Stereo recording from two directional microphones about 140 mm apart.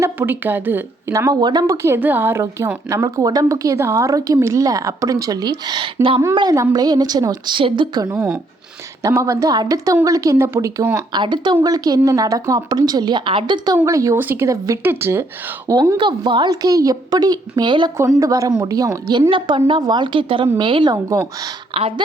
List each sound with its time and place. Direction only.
0.0 s speech: 15° right (ahead or behind); by 6.2 s 40° right (ahead or behind)
6.3 s speech: 25° right (ahead or behind)
11.1 s speech: 35° right (ahead or behind)
13.7 s speech: 20° right (ahead or behind)
17.9 s speech: 20° right (ahead or behind)
21.7 s speech: 40° right (ahead or behind)